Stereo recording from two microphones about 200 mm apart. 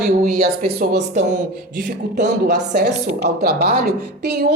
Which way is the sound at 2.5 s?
50° right (ahead or behind).